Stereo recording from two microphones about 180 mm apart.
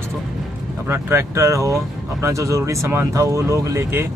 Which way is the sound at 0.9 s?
15° right (ahead or behind).